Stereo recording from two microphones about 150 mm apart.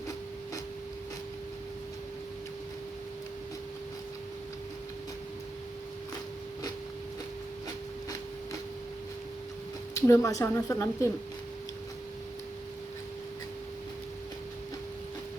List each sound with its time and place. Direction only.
9.9 s speech: 20° left (ahead or behind)